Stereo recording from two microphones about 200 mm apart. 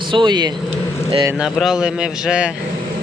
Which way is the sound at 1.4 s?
Centre (ahead or behind).